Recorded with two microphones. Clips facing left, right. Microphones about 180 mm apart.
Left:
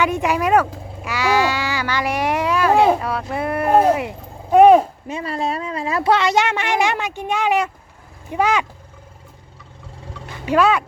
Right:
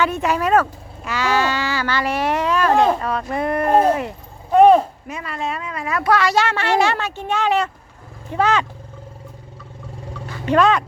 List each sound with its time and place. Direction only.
0.0 s speech: 15° left (ahead or behind)
5.0 s a woman's voice: 30° left (ahead or behind); by 8.6 s 10° left (ahead or behind)
10.2 s roaring cats: 10° left (ahead or behind)